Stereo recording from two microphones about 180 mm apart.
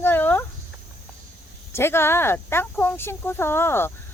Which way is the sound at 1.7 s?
15° left (ahead or behind).